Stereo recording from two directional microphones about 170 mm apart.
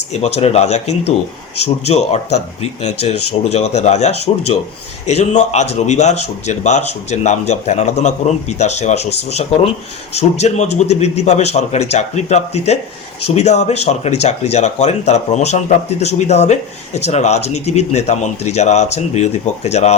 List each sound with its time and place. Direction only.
0.1 s a man's voice: 40° left (ahead or behind)